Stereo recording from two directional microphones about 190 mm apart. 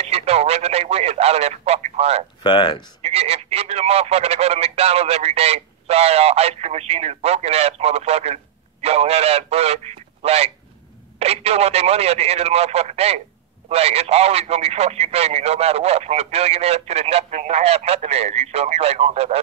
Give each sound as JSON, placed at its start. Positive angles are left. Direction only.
{"t": 0.0, "sound": "speech", "side_deg": -35}
{"t": 2.4, "sound": "speech", "side_deg": 25}
{"t": 3.0, "sound": "speech", "side_deg": -35}